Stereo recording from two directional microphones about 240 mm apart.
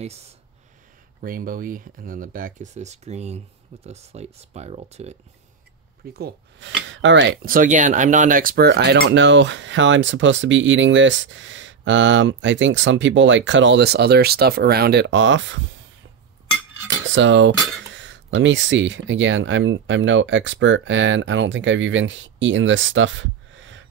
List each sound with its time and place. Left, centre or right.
1.2 s speech: right
6.1 s speech: right
16.8 s cutlery: right
17.9 s speech: right